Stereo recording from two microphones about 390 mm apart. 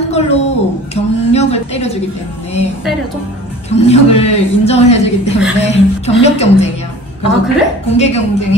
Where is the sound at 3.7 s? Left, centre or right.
Centre.